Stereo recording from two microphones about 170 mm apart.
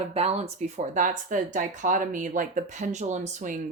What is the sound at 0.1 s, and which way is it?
A woman's voice, 35° right (ahead or behind).